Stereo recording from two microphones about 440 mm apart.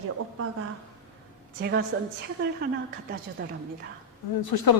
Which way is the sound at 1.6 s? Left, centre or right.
Right.